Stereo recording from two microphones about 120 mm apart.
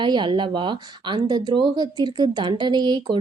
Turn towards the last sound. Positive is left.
turn(degrees=-40)  # may be behind; listen again after turning